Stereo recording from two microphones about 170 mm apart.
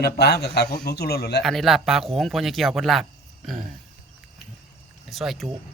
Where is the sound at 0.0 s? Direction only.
70° left (ahead or behind).